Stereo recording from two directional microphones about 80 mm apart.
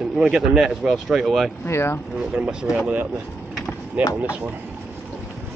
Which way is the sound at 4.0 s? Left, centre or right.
Centre.